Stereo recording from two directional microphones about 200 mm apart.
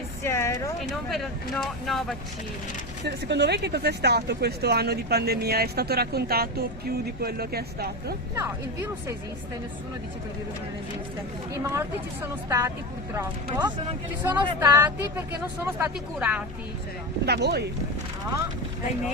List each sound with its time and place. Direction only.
0.3 s speech: 15° left (ahead or behind)
0.8 s speech: centre (ahead or behind)
3.0 s speech: 60° right (ahead or behind)
8.4 s speech: 15° right (ahead or behind)
11.5 s speech: 15° right (ahead or behind)
14.3 s speech: 10° right (ahead or behind)
17.2 s speech: 55° right (ahead or behind)